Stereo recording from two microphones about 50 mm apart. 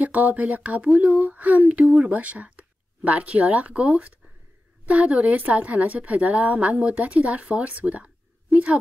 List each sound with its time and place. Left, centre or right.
0.0 s a woman's voice: right